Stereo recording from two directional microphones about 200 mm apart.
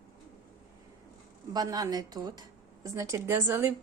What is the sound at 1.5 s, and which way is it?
Speech, 20° right (ahead or behind).